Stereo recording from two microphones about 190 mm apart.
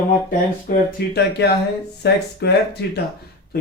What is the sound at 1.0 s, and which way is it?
Speech, 55° left (ahead or behind).